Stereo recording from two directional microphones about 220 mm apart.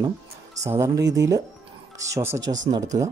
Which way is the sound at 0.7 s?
15° right (ahead or behind).